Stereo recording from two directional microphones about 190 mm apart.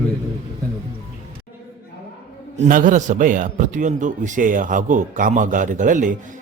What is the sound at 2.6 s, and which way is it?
A man's voice, 45° right (ahead or behind).